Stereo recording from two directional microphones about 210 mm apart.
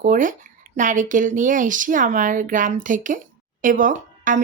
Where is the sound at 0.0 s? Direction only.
40° right (ahead or behind).